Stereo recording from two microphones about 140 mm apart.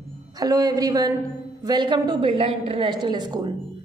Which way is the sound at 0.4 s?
25° right (ahead or behind).